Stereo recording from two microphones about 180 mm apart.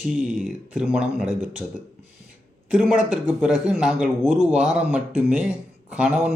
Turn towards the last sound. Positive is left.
turn(degrees=-5)  # may be behind; listen again after turning